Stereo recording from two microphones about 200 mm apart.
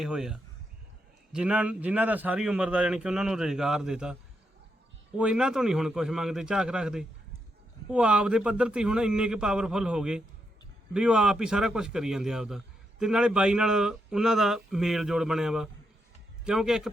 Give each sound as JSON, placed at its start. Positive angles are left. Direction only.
{"t": 0.0, "sound": "a man's voice", "side_deg": -5}